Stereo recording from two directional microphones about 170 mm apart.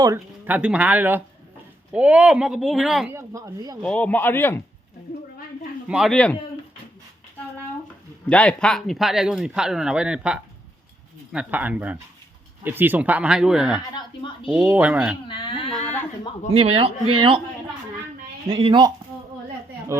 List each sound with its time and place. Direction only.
0.4 s speech: 10° right (ahead or behind)
3.1 s a woman's voice: 15° right (ahead or behind)
3.8 s speech: 10° left (ahead or behind)
5.9 s speech: centre (ahead or behind)
8.3 s speech: 5° left (ahead or behind)
15.3 s speech: 30° left (ahead or behind)
16.5 s a man's voice: 35° right (ahead or behind)
18.4 s a woman's voice: 30° right (ahead or behind)